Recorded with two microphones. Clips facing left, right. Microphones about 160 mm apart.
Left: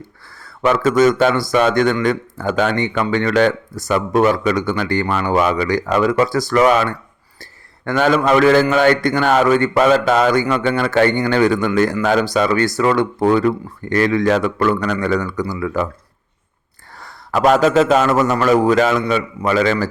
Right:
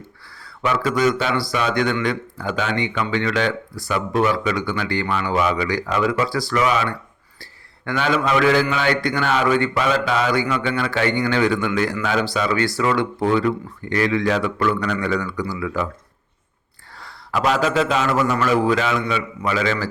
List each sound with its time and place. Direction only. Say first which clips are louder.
0.4 s a man's voice: left 6 dB; 50° left (ahead or behind)
17.0 s a man's voice: left 6 dB; 45° left (ahead or behind)